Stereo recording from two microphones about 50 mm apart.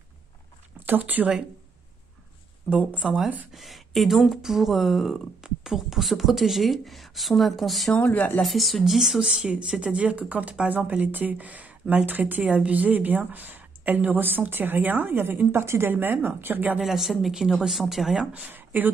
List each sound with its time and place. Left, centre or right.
0.7 s speech: right
2.9 s speech: right
3.5 s speech: centre
8.0 s speech: left
8.4 s a woman's voice: centre; by 16.7 s right
16.8 s speech: centre
18.5 s speech: right